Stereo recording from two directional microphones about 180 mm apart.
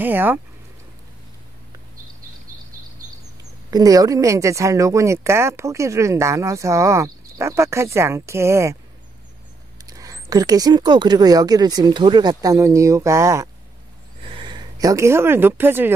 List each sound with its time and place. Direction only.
0.0 s speech: 10° right (ahead or behind)
3.7 s speech: 20° right (ahead or behind)
9.8 s speech: 20° right (ahead or behind)